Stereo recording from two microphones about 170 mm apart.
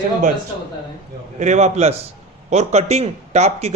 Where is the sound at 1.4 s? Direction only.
45° right (ahead or behind).